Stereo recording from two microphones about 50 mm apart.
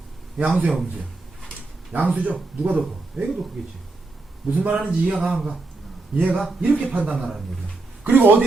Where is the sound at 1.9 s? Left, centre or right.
Right.